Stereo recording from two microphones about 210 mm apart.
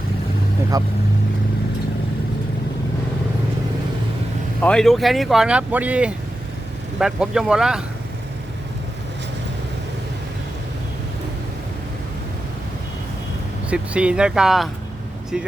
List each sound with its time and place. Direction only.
0.7 s speech: 15° right (ahead or behind)
4.6 s speech: 5° left (ahead or behind)
13.7 s speech: 5° right (ahead or behind)